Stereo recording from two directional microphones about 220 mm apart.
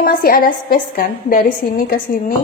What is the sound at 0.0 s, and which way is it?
A woman's voice, 40° left (ahead or behind).